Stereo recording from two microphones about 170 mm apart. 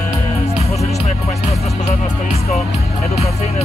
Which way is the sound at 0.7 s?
40° left (ahead or behind).